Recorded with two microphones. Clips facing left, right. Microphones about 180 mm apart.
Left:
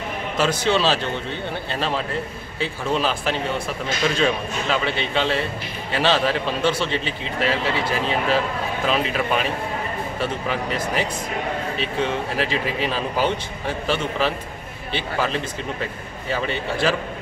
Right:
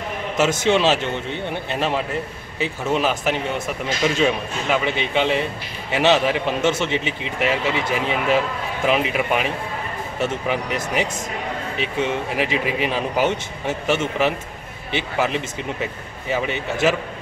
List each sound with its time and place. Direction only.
0.4 s speech: 20° right (ahead or behind)